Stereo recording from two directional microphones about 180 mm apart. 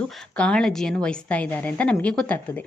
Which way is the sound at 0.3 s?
5° left (ahead or behind).